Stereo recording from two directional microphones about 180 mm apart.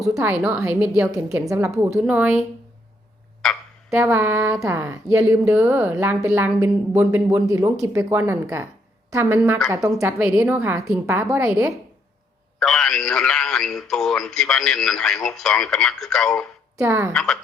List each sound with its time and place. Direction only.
0.0 s speech: 15° right (ahead or behind)
3.8 s speech: 10° right (ahead or behind)
9.7 s speech: 15° right (ahead or behind)
12.5 s a man's voice: 5° left (ahead or behind)
16.7 s speech: 15° right (ahead or behind)
17.1 s a man's voice: 5° left (ahead or behind)